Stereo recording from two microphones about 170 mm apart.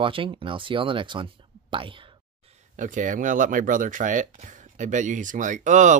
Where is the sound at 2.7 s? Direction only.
50° right (ahead or behind).